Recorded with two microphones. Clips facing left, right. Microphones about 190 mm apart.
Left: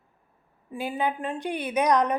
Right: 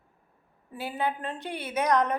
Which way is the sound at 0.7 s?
15° left (ahead or behind).